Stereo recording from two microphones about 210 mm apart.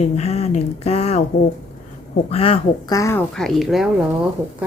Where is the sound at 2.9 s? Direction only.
15° left (ahead or behind).